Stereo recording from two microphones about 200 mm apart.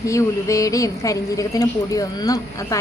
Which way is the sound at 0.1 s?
15° left (ahead or behind).